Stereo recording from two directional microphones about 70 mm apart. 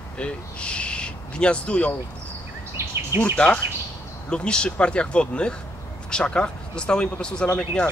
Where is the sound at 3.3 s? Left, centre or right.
Centre.